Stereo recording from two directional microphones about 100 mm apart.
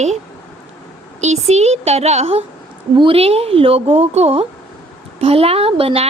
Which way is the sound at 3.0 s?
70° right (ahead or behind).